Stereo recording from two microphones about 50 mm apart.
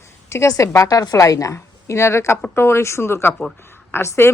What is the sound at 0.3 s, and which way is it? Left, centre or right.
A woman's voice, left.